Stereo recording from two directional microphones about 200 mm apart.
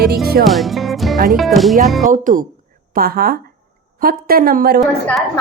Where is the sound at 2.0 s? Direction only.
40° right (ahead or behind).